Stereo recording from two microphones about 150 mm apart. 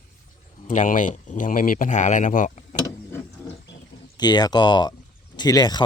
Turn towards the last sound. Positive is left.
turn(degrees=30)  # may be behind; listen again after turning